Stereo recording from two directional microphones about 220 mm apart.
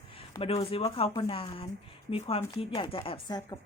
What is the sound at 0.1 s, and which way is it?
Speech, 25° left (ahead or behind).